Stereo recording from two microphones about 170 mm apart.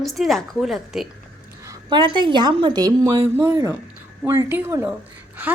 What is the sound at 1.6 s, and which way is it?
A woman's voice, 20° right (ahead or behind).